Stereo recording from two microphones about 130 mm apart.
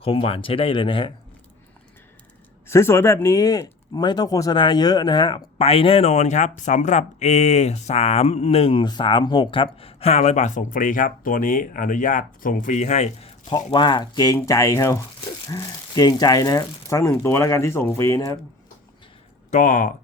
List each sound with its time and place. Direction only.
0.0 s speech: 45° left (ahead or behind)
2.6 s speech: 20° left (ahead or behind); by 13.3 s 55° left (ahead or behind)
13.7 s speech: 35° left (ahead or behind)
19.5 s speech: 80° left